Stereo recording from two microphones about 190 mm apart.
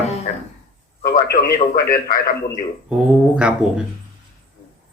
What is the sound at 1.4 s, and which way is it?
Speech, 50° left (ahead or behind).